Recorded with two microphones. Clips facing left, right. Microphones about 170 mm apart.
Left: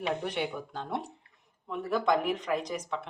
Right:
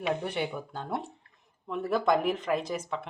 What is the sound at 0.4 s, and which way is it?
Speech, 5° right (ahead or behind).